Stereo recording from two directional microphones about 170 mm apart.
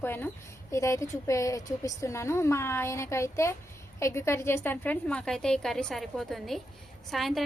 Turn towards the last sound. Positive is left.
turn(degrees=0)  # may be behind; listen again after turning